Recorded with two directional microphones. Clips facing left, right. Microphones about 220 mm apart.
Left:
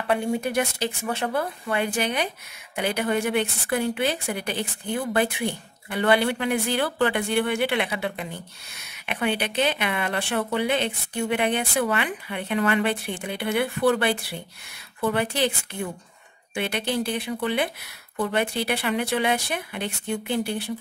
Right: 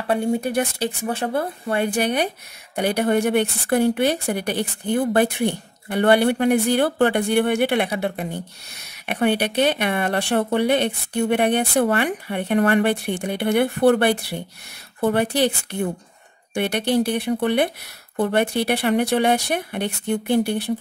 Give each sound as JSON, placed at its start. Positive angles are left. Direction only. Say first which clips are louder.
{"t": 0.0, "sound": "speech", "louder": "right 3 dB", "side_deg": -30}
{"t": 1.7, "sound": "speech", "louder": "right 5 dB", "side_deg": -40}
{"t": 7.9, "sound": "speech", "louder": "right 5 dB", "side_deg": -40}
{"t": 9.0, "sound": "speech", "louder": "right 6 dB", "side_deg": -50}